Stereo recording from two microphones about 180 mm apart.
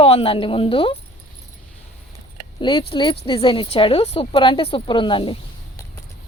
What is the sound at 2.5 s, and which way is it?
Speech, 25° left (ahead or behind).